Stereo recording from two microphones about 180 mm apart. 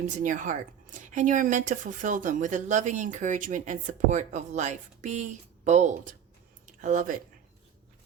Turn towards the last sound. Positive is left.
turn(degrees=-45)  # may be behind; listen again after turning